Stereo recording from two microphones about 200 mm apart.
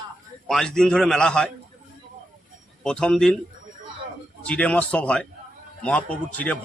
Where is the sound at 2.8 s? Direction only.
5° left (ahead or behind).